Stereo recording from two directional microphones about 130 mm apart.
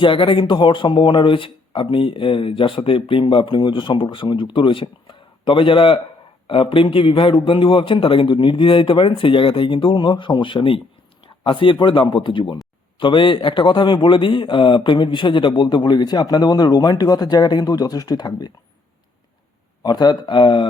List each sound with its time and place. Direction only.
0.0 s a man's voice: 40° left (ahead or behind)
19.8 s a man's voice: 35° left (ahead or behind)